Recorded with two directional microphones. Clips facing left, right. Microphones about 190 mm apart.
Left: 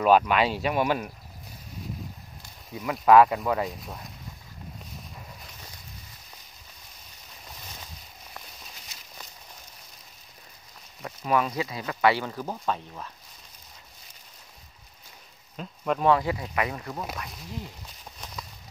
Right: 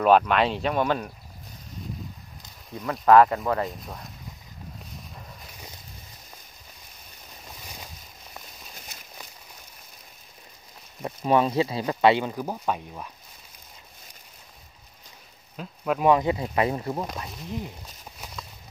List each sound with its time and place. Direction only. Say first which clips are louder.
0.0 s speech: right 1 dB; 5° left (ahead or behind)
2.8 s speech: right 1 dB; 10° left (ahead or behind)
3.6 s speech: right 1 dB; centre (ahead or behind)
8.9 s a sound: right 3 dB; 50° right (ahead or behind)
11.0 s speech: right 4 dB; 30° right (ahead or behind); by 13.1 s 10° right (ahead or behind)
15.5 s speech: right 1 dB; centre (ahead or behind)
16.1 s speech: right 3 dB; 20° right (ahead or behind)